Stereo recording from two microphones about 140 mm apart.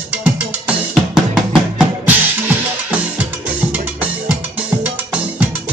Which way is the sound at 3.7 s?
10° right (ahead or behind).